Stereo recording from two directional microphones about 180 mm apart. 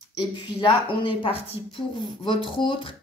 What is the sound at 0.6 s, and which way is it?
Speech, 30° left (ahead or behind).